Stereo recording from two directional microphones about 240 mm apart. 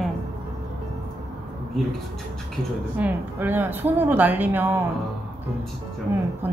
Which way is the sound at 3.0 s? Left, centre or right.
Centre.